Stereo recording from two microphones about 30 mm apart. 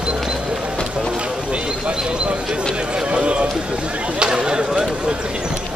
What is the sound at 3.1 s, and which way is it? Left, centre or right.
Run, right.